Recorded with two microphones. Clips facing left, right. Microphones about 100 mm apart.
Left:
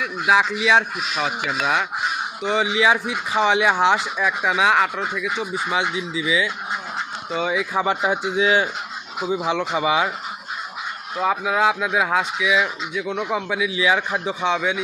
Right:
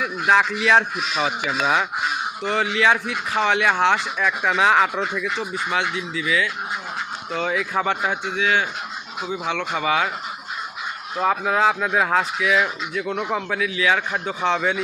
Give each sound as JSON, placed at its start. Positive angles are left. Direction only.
{"t": 0.0, "sound": "speech", "side_deg": 5}
{"t": 2.4, "sound": "speech", "side_deg": 10}
{"t": 7.3, "sound": "speech", "side_deg": 5}
{"t": 8.4, "sound": "speech", "side_deg": 30}
{"t": 9.2, "sound": "speech", "side_deg": 10}
{"t": 11.2, "sound": "speech", "side_deg": 5}